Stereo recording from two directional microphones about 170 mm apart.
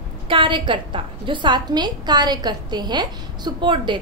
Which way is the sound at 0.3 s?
30° right (ahead or behind).